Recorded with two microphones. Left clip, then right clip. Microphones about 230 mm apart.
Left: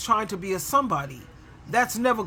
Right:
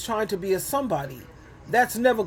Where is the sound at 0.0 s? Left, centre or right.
Centre.